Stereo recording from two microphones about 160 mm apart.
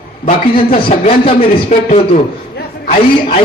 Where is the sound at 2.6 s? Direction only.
65° left (ahead or behind).